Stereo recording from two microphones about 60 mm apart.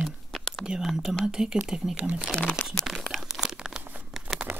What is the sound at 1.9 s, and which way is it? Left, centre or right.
Speech, right.